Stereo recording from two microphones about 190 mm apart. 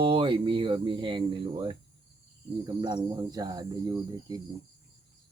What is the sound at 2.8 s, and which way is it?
Speech, 20° right (ahead or behind).